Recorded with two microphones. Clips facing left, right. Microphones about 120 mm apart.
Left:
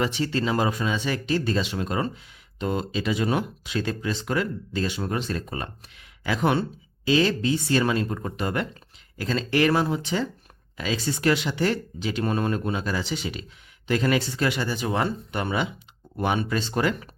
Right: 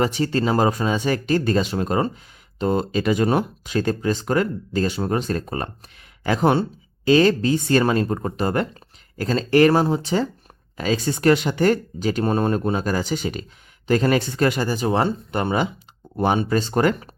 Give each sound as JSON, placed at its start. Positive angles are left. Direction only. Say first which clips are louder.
{"t": 0.0, "sound": "speech", "louder": "right 4 dB", "side_deg": -40}